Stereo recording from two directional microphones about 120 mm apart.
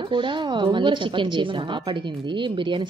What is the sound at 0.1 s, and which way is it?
A woman's voice, 40° right (ahead or behind).